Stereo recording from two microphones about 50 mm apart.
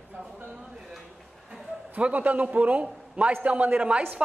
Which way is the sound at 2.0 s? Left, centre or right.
Right.